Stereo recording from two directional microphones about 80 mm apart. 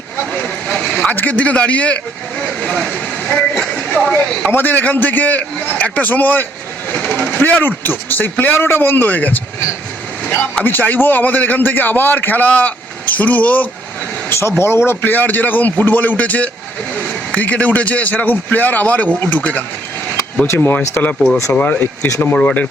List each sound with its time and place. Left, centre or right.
0.4 s a sound: centre
1.1 s a man's voice: left
2.4 s vehicle: centre
3.8 s a sound: centre
4.4 s a man's voice: left
6.9 s a sound: centre
7.9 s a man's voice: left
10.6 s a man's voice: left
14.3 s speech: left
14.8 s a man's voice: left